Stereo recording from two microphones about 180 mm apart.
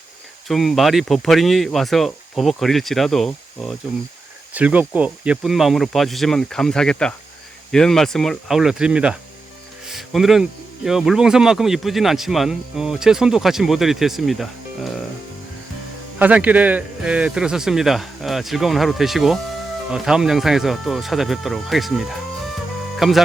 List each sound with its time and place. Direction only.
0.4 s speech: centre (ahead or behind)
4.5 s speech: 10° right (ahead or behind)
16.1 s speech: 10° right (ahead or behind)